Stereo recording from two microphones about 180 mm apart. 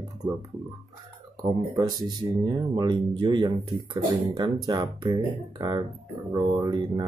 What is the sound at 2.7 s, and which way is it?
Speech, 25° right (ahead or behind).